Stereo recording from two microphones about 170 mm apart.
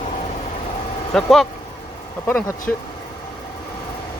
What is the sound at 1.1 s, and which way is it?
Speech, centre (ahead or behind).